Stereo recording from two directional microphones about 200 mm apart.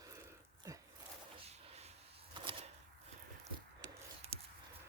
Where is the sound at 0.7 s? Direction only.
15° right (ahead or behind).